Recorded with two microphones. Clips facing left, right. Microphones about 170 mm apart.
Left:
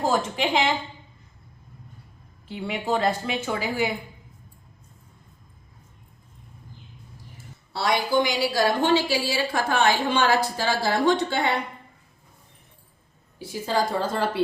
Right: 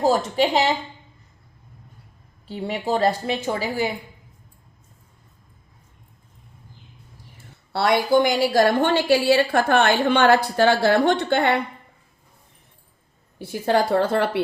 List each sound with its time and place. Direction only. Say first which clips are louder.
0.1 s a woman's voice: right 4 dB; 40° right (ahead or behind)
2.5 s a woman's voice: right 2 dB; 40° right (ahead or behind)
7.7 s a woman's voice: right 5 dB; 60° right (ahead or behind)
13.4 s a woman's voice: right 5 dB; 60° right (ahead or behind)